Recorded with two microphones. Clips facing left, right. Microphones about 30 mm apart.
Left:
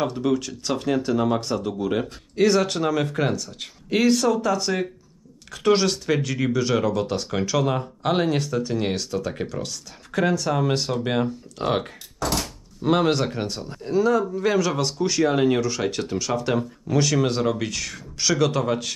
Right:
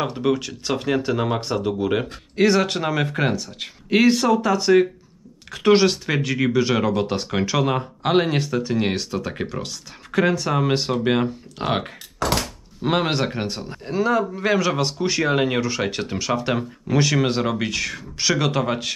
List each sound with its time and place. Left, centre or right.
0.0 s speech: right
12.2 s thunk: right
12.8 s speech: right